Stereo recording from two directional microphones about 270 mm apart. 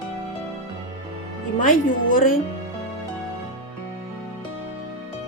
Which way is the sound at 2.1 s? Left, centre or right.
Left.